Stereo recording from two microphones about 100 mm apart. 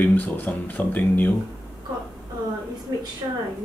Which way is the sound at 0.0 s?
15° left (ahead or behind).